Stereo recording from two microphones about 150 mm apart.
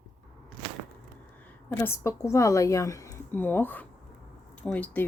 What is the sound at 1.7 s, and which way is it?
Speech, 15° left (ahead or behind).